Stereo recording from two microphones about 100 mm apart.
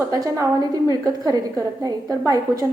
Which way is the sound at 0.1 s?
35° right (ahead or behind).